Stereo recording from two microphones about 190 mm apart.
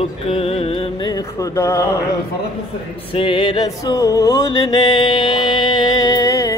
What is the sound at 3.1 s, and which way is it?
Music, 25° left (ahead or behind).